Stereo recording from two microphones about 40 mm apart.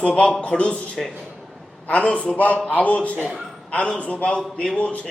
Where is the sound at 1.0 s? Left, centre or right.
Centre.